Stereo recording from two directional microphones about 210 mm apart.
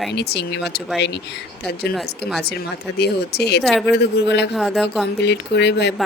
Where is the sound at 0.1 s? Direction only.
55° left (ahead or behind).